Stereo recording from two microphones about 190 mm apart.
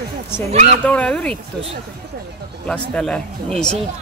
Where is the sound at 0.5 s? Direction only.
35° right (ahead or behind).